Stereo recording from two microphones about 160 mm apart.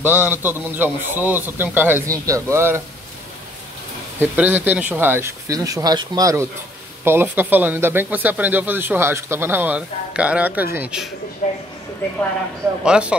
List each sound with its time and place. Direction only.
0.0 s speech: 10° right (ahead or behind)
4.2 s speech: 10° right (ahead or behind)
11.4 s a sound: 50° left (ahead or behind)
12.8 s speech: 5° right (ahead or behind)